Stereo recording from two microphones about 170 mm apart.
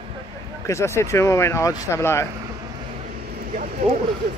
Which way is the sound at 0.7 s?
15° left (ahead or behind).